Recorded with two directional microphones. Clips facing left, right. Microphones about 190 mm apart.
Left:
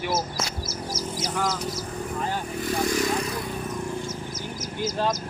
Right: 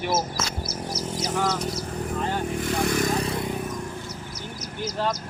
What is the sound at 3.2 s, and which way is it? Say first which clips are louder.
Vehicle: right 2 dB; 25° right (ahead or behind).